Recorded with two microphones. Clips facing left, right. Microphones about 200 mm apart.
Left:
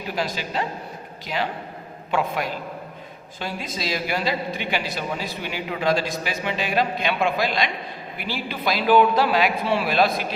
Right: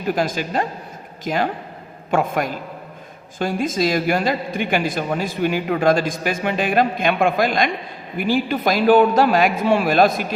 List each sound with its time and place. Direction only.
0.2 s a woman's voice: 50° right (ahead or behind)